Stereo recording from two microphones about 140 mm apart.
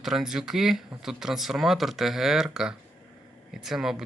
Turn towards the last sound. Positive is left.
turn(degrees=-5)  # may be behind; listen again after turning